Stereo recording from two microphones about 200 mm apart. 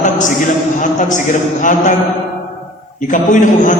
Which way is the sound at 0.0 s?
40° left (ahead or behind).